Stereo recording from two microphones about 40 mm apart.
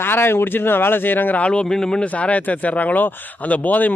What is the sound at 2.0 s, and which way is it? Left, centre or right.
Speech, left.